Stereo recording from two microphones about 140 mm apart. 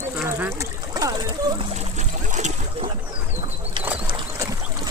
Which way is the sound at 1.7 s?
55° right (ahead or behind).